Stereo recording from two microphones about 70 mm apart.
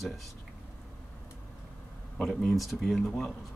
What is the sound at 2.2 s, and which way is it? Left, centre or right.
Speech, centre.